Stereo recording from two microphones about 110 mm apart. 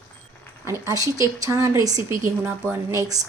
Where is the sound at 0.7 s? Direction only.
30° right (ahead or behind).